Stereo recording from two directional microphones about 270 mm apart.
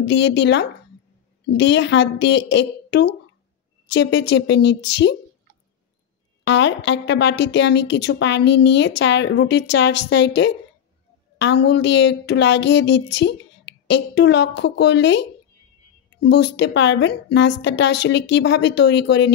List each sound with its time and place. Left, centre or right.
0.0 s speech: left
6.4 s speech: left